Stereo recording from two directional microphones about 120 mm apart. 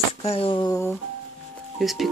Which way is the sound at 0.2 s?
55° left (ahead or behind).